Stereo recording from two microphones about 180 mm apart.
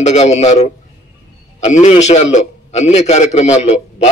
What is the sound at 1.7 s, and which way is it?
A man's voice, 40° left (ahead or behind).